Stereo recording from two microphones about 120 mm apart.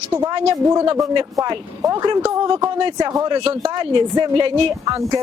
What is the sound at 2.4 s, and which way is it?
Speech, 45° right (ahead or behind).